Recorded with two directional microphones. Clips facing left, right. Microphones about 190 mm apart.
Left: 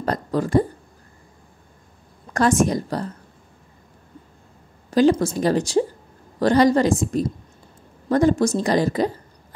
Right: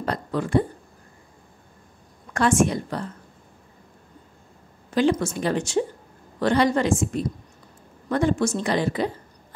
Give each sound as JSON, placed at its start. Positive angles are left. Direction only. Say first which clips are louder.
{"t": 0.0, "sound": "speech", "louder": "left 4 dB", "side_deg": 40}
{"t": 2.3, "sound": "a woman's voice", "louder": "left 2 dB", "side_deg": 40}
{"t": 4.9, "sound": "a woman's voice", "louder": "left 4 dB", "side_deg": 35}